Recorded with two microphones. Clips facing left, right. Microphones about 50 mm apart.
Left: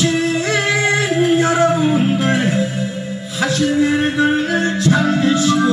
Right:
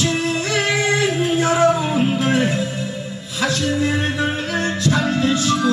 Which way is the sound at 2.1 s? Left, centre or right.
Left.